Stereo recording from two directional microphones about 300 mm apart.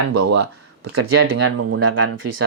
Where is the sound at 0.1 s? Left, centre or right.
Right.